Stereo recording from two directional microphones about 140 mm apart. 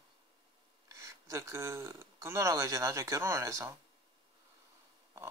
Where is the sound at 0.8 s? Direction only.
20° right (ahead or behind).